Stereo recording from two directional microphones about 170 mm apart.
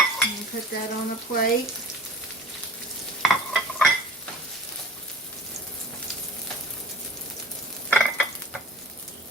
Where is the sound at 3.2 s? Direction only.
Centre (ahead or behind).